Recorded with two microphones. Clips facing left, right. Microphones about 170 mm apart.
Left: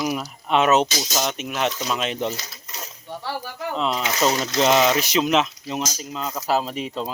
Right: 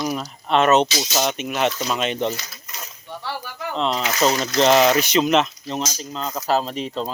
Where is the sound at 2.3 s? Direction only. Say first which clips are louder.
Even; 30° left (ahead or behind).